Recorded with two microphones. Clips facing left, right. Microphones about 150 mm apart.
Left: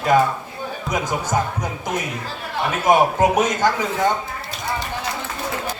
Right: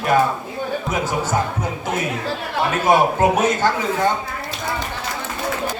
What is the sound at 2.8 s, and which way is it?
A man's voice, 15° left (ahead or behind).